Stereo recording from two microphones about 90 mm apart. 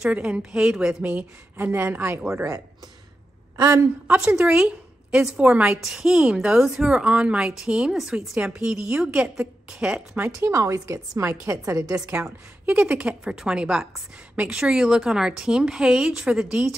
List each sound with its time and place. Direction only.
0.1 s a woman's voice: 10° right (ahead or behind)
1.0 s speech: 20° right (ahead or behind)
2.3 s a woman's voice: 35° right (ahead or behind)
4.4 s a woman's voice: 10° right (ahead or behind)
10.1 s speech: 25° right (ahead or behind)
10.5 s a woman's voice: 35° right (ahead or behind)
12.6 s a woman's voice: 15° right (ahead or behind)